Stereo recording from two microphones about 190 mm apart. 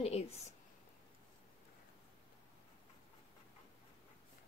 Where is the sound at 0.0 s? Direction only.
35° left (ahead or behind).